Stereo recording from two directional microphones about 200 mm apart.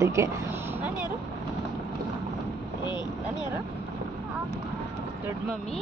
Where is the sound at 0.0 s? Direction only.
15° right (ahead or behind).